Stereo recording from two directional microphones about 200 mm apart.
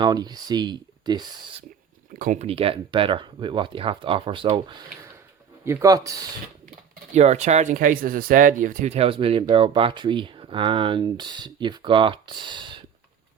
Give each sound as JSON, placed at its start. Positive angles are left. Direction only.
{"t": 0.0, "sound": "speech", "side_deg": -20}
{"t": 2.1, "sound": "speech", "side_deg": -40}
{"t": 5.6, "sound": "speech", "side_deg": -15}
{"t": 7.1, "sound": "speech", "side_deg": -35}